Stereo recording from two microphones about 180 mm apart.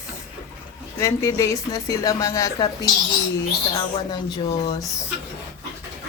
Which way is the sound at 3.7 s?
25° left (ahead or behind).